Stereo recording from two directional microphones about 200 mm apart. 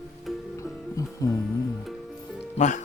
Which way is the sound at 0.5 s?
15° left (ahead or behind).